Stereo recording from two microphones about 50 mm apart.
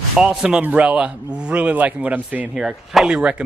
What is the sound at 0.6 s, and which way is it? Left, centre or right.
A man's voice, right.